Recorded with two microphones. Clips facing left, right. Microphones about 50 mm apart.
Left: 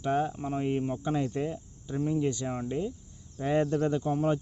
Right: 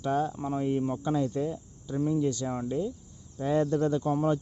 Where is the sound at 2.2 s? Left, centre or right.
Left.